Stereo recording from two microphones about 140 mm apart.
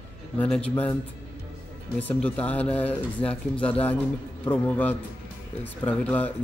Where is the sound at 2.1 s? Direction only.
10° left (ahead or behind).